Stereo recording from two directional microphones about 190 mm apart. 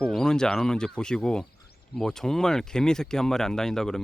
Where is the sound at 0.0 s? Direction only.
5° left (ahead or behind).